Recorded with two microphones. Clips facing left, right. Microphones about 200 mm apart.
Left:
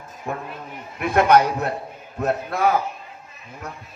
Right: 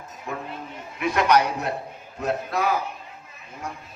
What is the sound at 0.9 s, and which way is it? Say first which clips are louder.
A man's voice: left 4 dB; 55° left (ahead or behind).